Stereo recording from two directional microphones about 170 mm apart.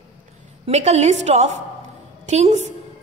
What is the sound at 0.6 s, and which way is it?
A woman's voice, 40° right (ahead or behind).